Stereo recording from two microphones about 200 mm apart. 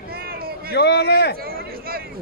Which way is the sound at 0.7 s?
55° left (ahead or behind).